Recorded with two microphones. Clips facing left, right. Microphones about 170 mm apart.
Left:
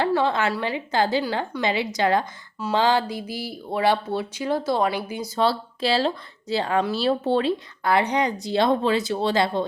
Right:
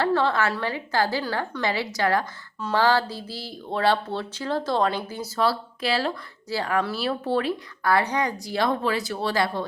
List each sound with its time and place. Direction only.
0.0 s speech: 15° left (ahead or behind)
5.3 s speech: 25° left (ahead or behind)